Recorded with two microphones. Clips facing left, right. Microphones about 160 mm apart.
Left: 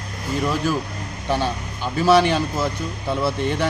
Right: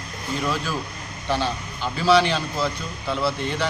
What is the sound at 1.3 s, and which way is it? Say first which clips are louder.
Speech: left 2 dB; 15° left (ahead or behind).